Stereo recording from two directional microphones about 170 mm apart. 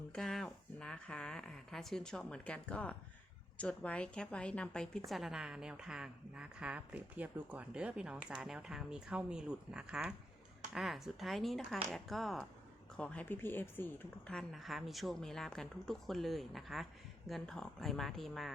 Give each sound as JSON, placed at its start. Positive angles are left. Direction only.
{"t": 0.1, "sound": "a woman's voice", "side_deg": 0}